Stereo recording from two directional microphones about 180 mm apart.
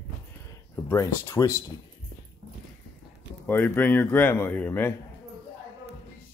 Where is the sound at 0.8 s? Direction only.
15° left (ahead or behind).